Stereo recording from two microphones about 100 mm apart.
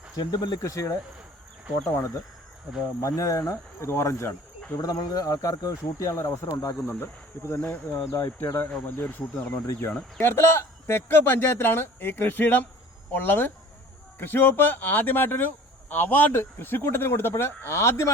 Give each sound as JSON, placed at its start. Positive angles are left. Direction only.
{"t": 0.2, "sound": "speech", "side_deg": 45}
{"t": 2.0, "sound": "speech", "side_deg": 30}
{"t": 6.8, "sound": "speech", "side_deg": 25}